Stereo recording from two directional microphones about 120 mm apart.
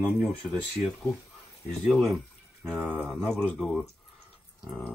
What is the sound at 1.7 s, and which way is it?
Speech, centre (ahead or behind).